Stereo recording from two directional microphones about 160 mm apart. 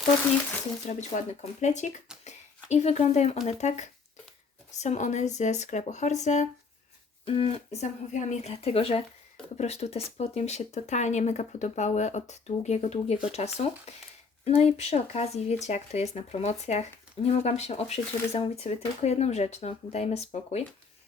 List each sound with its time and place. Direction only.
0.9 s speech: 50° left (ahead or behind)
2.2 s a sound: 45° left (ahead or behind)
3.4 s speech: 45° left (ahead or behind)